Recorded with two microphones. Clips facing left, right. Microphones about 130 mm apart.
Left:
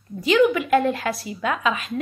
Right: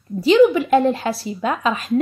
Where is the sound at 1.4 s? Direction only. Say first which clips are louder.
Right 2 dB; 35° right (ahead or behind).